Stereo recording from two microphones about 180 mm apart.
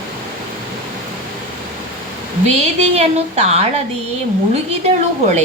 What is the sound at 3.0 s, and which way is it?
A woman's voice, 35° right (ahead or behind).